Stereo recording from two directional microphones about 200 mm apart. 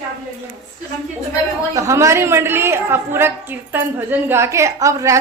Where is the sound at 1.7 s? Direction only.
15° right (ahead or behind).